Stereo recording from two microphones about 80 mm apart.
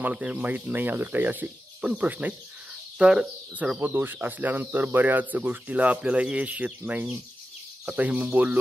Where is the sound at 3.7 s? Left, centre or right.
Right.